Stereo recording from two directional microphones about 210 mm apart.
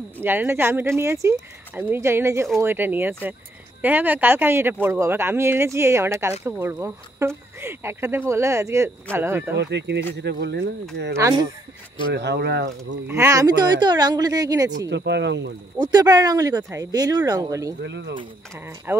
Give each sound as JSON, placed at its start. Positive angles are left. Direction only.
{"t": 0.2, "sound": "speech", "side_deg": -10}
{"t": 9.6, "sound": "speech", "side_deg": -55}
{"t": 11.1, "sound": "speech", "side_deg": -15}
{"t": 12.1, "sound": "speech", "side_deg": -55}
{"t": 13.1, "sound": "speech", "side_deg": -15}
{"t": 14.9, "sound": "speech", "side_deg": -55}
{"t": 15.8, "sound": "speech", "side_deg": -20}
{"t": 17.8, "sound": "speech", "side_deg": -55}
{"t": 18.1, "sound": "speech", "side_deg": -15}